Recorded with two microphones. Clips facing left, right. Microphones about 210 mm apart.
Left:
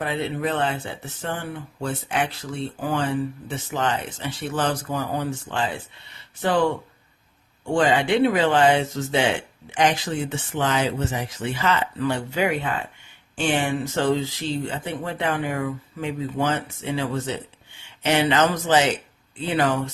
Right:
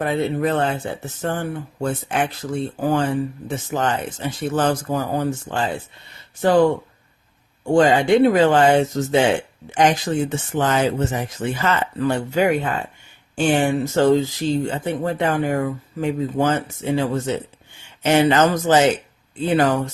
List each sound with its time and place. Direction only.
0.0 s speech: 45° right (ahead or behind)
7.7 s speech: 40° right (ahead or behind)